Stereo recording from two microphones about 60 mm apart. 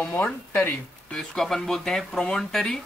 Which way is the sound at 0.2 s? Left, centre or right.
Left.